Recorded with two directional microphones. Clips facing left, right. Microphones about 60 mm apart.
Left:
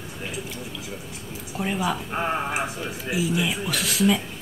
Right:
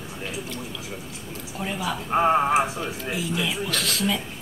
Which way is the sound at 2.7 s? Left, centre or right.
Centre.